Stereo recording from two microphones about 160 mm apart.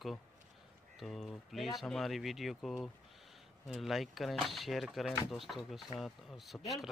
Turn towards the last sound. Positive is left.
turn(degrees=0)  # may be behind; listen again after turning